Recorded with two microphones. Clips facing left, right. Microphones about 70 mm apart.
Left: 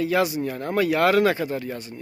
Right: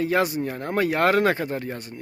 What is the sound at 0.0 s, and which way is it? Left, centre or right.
Speech, right.